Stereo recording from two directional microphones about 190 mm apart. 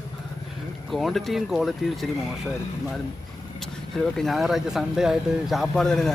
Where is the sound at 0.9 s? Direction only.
Centre (ahead or behind).